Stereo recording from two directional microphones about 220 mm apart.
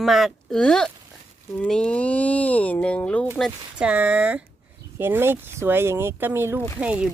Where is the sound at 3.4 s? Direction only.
5° right (ahead or behind).